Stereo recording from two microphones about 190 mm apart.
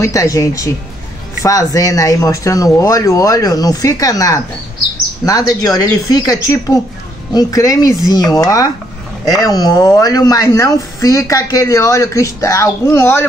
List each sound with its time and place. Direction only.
0.0 s speech: 15° left (ahead or behind)